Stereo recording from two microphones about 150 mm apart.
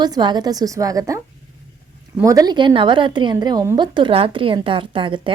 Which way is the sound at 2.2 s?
25° right (ahead or behind).